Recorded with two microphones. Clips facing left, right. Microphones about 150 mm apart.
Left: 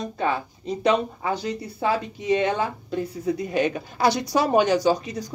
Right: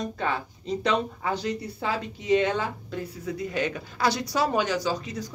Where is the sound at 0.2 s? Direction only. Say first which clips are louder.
Left 4 dB; 15° left (ahead or behind).